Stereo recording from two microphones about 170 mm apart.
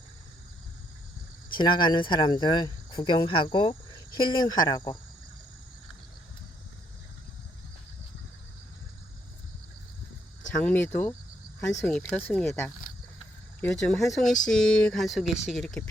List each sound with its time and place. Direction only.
1.5 s speech: 25° left (ahead or behind)
10.5 s speech: 10° left (ahead or behind)
13.6 s speech: 5° left (ahead or behind)